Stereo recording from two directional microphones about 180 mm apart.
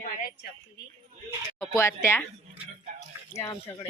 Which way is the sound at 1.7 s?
15° left (ahead or behind).